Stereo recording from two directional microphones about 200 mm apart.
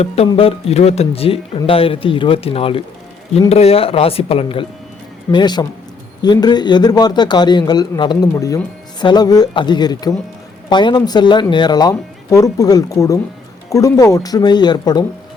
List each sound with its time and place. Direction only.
0.0 s a man's voice: 30° left (ahead or behind)